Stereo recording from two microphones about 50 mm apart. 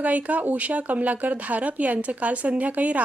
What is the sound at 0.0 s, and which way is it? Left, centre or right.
Speech, right.